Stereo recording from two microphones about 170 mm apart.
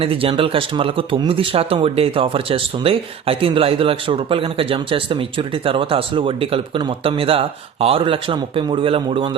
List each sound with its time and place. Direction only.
0.0 s speech: 30° right (ahead or behind)